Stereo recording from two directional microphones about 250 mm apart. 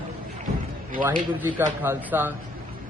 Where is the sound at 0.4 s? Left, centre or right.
Right.